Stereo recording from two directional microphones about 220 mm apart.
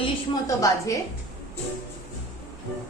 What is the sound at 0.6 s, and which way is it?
Speech, 15° left (ahead or behind).